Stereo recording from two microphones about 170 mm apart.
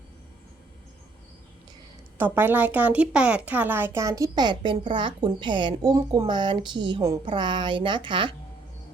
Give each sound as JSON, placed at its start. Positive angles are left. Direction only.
{"t": 2.1, "sound": "a woman's voice", "side_deg": -10}